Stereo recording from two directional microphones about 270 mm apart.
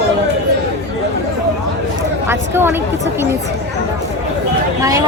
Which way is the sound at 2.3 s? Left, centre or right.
Centre.